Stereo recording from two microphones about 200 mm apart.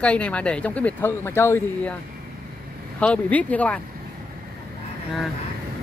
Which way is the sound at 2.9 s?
5° left (ahead or behind).